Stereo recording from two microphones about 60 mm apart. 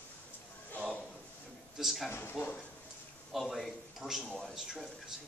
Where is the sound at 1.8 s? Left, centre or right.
Centre.